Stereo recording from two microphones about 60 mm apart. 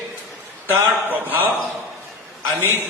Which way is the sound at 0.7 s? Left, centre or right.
Right.